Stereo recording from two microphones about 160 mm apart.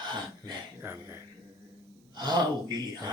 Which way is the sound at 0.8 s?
15° right (ahead or behind).